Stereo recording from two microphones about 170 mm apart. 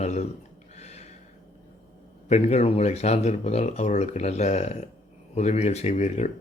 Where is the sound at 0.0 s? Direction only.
40° left (ahead or behind).